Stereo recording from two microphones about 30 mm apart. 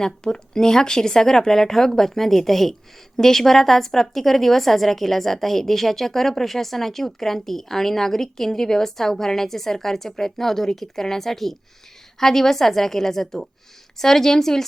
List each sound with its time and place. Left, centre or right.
0.0 s a woman's voice: centre